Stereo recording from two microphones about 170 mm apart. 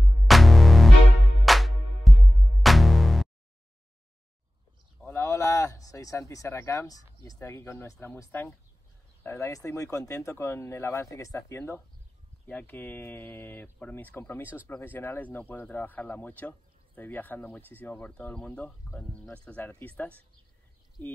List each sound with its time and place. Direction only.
0.3 s music: centre (ahead or behind)
5.0 s speech: 15° left (ahead or behind)